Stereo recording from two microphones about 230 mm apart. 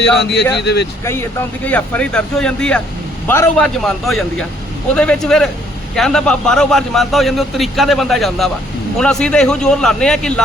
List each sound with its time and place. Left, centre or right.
0.2 s speech: left
1.0 s a man's voice: centre